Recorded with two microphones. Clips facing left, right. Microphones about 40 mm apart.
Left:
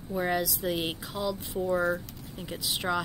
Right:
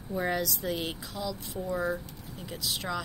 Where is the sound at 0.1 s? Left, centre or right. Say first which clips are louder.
Left 1 dB; centre.